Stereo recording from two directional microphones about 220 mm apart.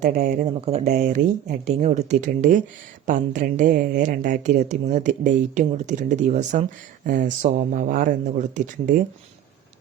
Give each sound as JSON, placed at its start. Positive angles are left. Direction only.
{"t": 0.0, "sound": "speech", "side_deg": -35}